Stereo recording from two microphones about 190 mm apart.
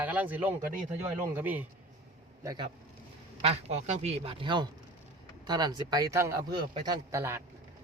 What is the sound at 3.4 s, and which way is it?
A man's voice, 35° right (ahead or behind).